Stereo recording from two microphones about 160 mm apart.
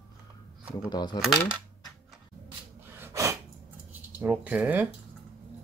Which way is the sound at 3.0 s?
15° right (ahead or behind).